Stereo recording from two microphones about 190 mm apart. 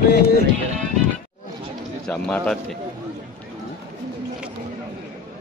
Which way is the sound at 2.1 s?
5° left (ahead or behind).